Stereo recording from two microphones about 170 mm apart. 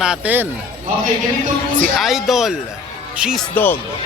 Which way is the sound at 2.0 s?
Centre (ahead or behind).